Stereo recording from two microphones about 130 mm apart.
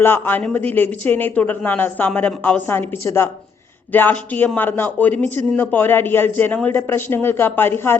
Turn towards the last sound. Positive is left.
turn(degrees=15)  # may be behind; listen again after turning